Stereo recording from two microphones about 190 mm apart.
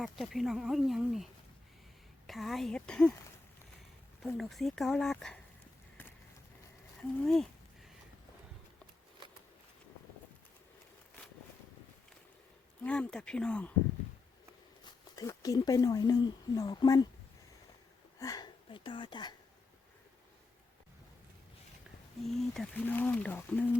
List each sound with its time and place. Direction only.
0.0 s speech: centre (ahead or behind)
4.2 s speech: centre (ahead or behind)
7.2 s a sound: centre (ahead or behind)
12.8 s speech: 5° left (ahead or behind)
15.1 s speech: 20° left (ahead or behind)
18.2 s speech: 20° left (ahead or behind)
22.2 s speech: centre (ahead or behind)